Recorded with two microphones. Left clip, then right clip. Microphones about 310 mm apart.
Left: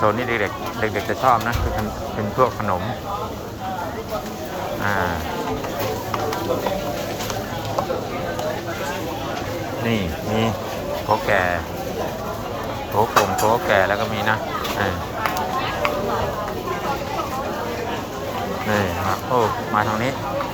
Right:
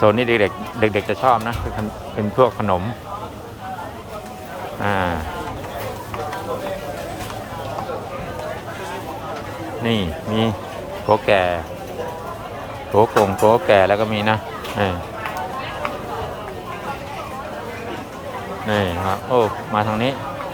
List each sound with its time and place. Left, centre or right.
0.0 s speech: right
4.8 s speech: right
9.8 s speech: right
13.0 s speech: right
18.7 s speech: right